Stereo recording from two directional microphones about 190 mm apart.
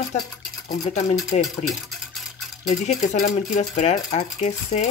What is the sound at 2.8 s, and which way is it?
Speech, 45° left (ahead or behind).